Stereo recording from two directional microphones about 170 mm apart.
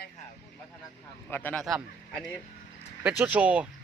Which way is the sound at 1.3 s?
10° left (ahead or behind).